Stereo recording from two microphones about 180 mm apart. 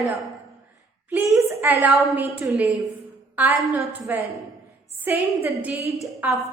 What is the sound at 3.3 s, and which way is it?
A woman's voice, 10° right (ahead or behind).